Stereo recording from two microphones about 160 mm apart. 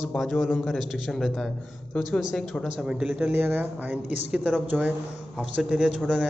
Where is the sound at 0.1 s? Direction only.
Centre (ahead or behind).